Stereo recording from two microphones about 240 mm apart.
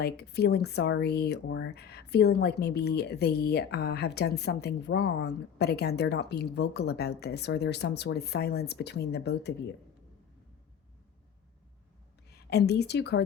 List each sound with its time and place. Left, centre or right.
0.0 s speech: left
12.3 s a woman's voice: left